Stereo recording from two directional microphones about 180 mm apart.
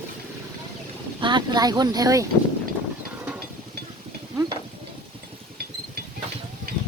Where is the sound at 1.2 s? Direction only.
25° right (ahead or behind).